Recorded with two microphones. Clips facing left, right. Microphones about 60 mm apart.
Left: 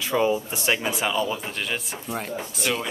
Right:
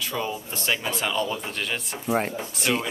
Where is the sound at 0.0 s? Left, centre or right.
Left.